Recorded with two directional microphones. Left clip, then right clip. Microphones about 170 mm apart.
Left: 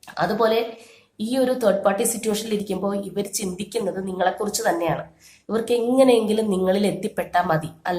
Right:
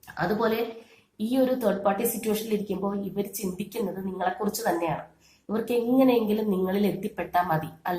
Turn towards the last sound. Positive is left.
turn(degrees=20)  # may be behind; listen again after turning